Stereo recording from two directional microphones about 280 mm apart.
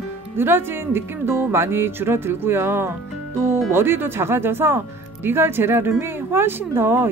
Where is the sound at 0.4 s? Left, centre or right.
Centre.